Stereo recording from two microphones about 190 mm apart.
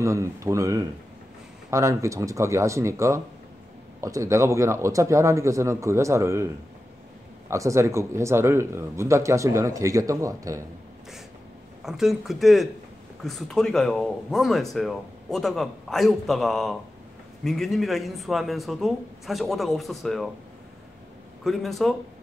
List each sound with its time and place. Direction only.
0.0 s speech: 15° right (ahead or behind)
11.8 s speech: centre (ahead or behind)
21.5 s speech: centre (ahead or behind)